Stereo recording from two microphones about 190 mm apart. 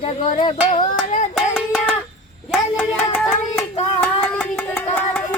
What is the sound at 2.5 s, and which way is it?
Hands, 5° left (ahead or behind).